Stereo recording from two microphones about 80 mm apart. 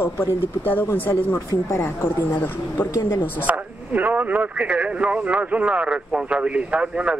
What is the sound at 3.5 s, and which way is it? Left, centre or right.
Speech, right.